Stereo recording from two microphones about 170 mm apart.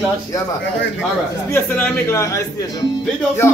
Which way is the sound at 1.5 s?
15° left (ahead or behind).